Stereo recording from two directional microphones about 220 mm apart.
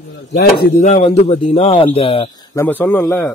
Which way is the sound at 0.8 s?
30° left (ahead or behind).